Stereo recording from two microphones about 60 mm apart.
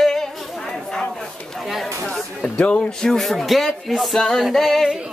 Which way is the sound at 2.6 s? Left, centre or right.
Centre.